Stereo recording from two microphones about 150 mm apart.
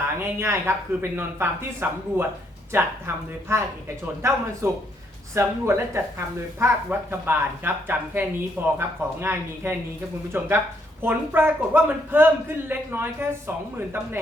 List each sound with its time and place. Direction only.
0.2 s speech: 15° right (ahead or behind)